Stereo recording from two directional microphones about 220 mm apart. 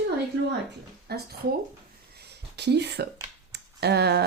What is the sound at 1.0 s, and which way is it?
Speech, 45° right (ahead or behind).